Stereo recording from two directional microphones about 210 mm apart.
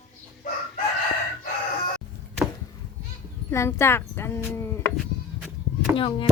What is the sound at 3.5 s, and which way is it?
Speech, 10° left (ahead or behind).